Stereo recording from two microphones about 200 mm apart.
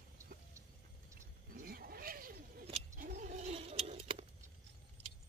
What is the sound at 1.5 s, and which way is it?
Vehicle, 50° right (ahead or behind).